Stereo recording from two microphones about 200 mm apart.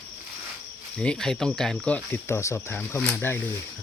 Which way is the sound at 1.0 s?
5° left (ahead or behind).